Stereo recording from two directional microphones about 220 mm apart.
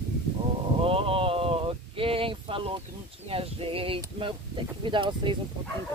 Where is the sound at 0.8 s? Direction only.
25° right (ahead or behind).